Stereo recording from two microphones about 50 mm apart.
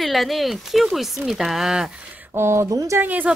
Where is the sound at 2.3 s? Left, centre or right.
Right.